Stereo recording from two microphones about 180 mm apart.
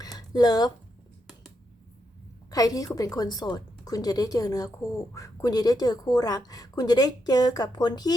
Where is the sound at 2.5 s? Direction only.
20° left (ahead or behind).